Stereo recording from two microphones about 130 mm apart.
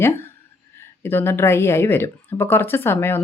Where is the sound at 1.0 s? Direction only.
15° left (ahead or behind).